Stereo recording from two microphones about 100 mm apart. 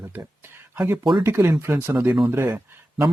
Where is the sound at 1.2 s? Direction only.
25° right (ahead or behind).